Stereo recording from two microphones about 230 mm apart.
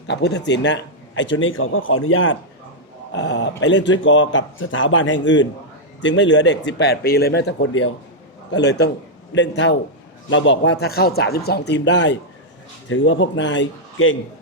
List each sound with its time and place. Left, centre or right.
0.1 s speech: left
8.4 s speech: left